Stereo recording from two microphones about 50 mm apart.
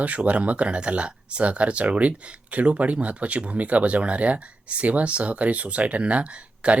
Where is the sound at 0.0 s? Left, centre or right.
Right.